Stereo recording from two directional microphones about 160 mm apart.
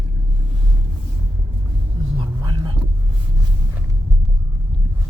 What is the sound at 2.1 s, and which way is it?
Vehicle, 30° right (ahead or behind).